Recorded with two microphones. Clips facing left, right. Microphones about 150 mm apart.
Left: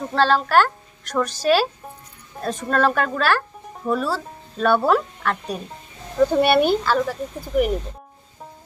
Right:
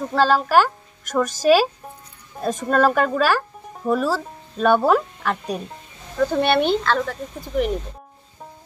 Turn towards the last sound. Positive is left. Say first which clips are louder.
# left 2 dB
turn(degrees=10)  # may be behind; listen again after turning